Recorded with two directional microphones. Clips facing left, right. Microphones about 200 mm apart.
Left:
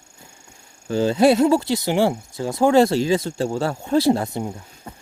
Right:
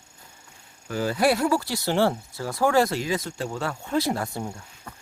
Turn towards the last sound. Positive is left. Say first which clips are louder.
# left 5 dB
turn(degrees=20)  # may be behind; listen again after turning